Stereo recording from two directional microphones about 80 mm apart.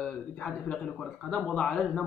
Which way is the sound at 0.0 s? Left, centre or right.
Centre.